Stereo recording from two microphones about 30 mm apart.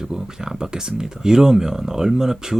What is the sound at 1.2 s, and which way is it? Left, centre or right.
Speech, centre.